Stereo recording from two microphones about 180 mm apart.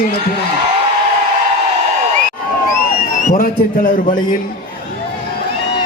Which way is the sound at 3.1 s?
45° left (ahead or behind).